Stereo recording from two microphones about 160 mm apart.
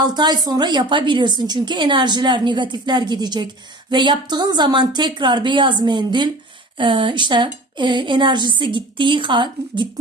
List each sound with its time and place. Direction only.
0.0 s a woman's voice: 25° right (ahead or behind)